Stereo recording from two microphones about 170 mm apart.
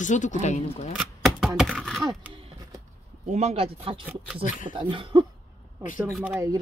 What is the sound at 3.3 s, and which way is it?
Speech, 40° right (ahead or behind).